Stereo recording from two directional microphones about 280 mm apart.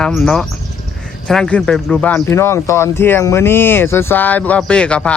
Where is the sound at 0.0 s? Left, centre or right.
Centre.